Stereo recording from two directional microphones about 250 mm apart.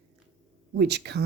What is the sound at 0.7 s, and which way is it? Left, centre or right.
Speech, right.